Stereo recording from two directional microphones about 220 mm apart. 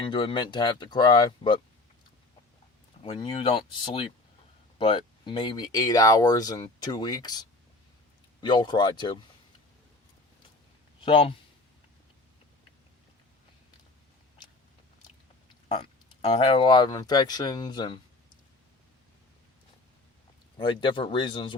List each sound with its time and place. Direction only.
0.0 s speech: 25° left (ahead or behind)
3.0 s speech: 25° left (ahead or behind)
11.0 s speech: 20° left (ahead or behind)
15.7 s speech: 25° left (ahead or behind)
20.6 s speech: 20° left (ahead or behind)